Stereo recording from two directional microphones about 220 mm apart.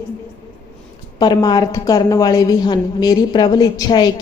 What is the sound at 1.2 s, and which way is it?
A woman's voice, 20° left (ahead or behind).